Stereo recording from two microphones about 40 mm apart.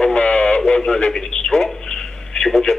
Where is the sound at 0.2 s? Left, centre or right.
Left.